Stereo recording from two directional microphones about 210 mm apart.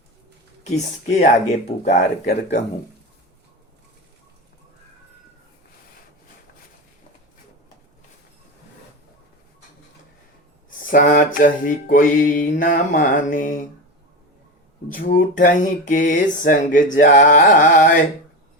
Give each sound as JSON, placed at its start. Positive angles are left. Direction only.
{"t": 0.6, "sound": "music", "side_deg": 35}
{"t": 10.7, "sound": "music", "side_deg": 40}
{"t": 14.9, "sound": "music", "side_deg": 40}